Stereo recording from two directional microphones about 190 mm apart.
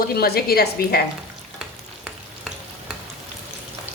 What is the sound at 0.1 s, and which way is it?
Speech, 55° left (ahead or behind).